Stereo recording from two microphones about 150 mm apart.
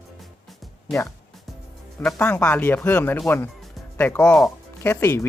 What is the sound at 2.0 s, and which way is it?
Speech, 10° left (ahead or behind).